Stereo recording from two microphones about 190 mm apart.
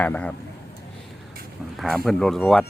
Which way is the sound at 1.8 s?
Centre (ahead or behind).